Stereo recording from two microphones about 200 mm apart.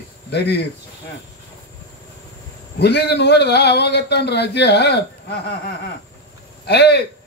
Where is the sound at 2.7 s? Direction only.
55° left (ahead or behind).